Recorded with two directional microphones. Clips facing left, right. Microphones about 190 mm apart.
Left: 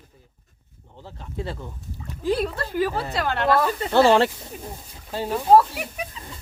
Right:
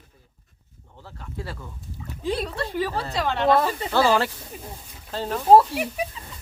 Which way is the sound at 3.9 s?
25° left (ahead or behind).